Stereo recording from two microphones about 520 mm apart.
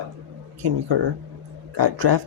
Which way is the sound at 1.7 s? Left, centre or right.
Right.